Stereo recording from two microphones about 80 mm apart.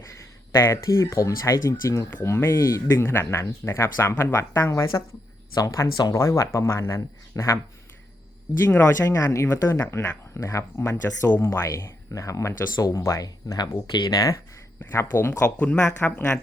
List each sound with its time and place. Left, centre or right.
0.0 s speech: left
2.0 s speech: left
8.6 s speech: left
14.8 s speech: left
15.5 s speech: centre